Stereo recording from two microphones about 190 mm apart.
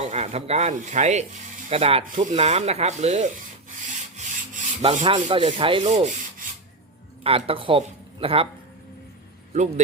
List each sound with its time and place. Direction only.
0.0 s speech: 35° right (ahead or behind)
3.8 s rub: 40° right (ahead or behind)
7.3 s speech: 30° right (ahead or behind)
9.5 s speech: 40° right (ahead or behind)